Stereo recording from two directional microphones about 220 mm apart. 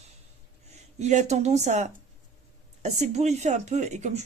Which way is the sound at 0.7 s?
30° right (ahead or behind).